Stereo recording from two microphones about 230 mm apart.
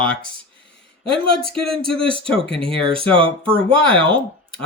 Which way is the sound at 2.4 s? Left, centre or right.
Right.